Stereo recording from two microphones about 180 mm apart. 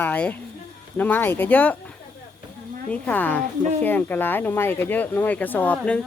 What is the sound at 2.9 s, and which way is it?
Speech, 10° left (ahead or behind).